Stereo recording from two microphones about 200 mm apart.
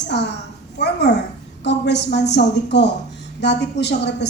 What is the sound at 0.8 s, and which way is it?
A woman's voice, 60° left (ahead or behind).